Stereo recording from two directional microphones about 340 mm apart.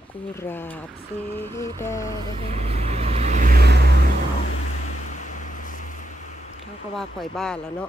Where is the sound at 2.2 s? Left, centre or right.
Centre.